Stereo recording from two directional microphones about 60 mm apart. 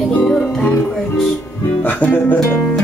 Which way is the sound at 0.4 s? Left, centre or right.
Left.